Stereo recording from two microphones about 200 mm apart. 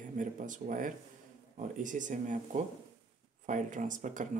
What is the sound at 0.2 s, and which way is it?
Speech, 40° right (ahead or behind).